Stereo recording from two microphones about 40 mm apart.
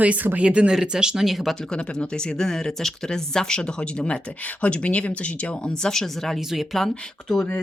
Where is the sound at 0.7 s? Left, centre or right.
Centre.